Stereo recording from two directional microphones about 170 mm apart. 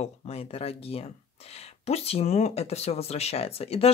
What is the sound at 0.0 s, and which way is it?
Speech, 35° left (ahead or behind).